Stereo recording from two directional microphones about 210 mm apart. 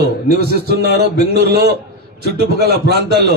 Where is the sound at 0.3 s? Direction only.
50° right (ahead or behind).